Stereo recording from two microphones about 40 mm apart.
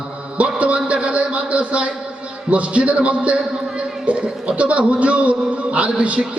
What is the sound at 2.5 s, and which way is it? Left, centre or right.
Speech, right.